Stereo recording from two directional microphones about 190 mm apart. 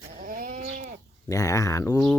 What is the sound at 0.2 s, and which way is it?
Goat, 45° right (ahead or behind).